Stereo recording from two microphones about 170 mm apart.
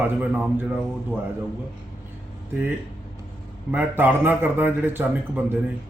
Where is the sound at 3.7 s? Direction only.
10° right (ahead or behind).